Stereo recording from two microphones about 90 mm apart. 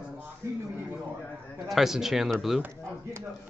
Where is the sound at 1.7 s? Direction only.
5° right (ahead or behind).